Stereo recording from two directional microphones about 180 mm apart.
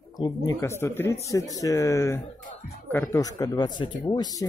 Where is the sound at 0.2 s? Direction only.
20° left (ahead or behind).